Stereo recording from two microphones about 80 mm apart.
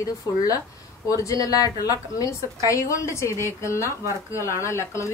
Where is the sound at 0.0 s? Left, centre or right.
Left.